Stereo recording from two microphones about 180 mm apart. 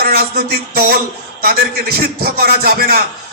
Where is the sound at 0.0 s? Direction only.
60° right (ahead or behind).